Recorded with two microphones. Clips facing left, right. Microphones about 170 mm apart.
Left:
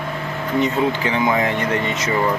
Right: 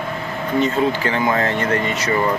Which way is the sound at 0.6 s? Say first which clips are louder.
Right 1 dB; 15° left (ahead or behind).